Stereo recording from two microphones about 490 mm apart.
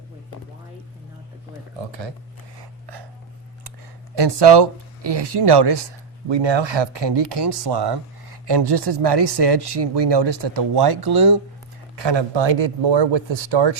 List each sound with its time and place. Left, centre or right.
1.9 s speech: right
2.6 s gasp: right
4.1 s speech: right
6.2 s speech: right
11.9 s speech: right